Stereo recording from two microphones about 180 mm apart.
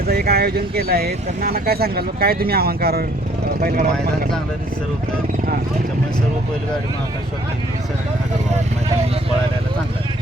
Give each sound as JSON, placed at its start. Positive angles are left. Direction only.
{"t": 0.1, "sound": "speech", "side_deg": -60}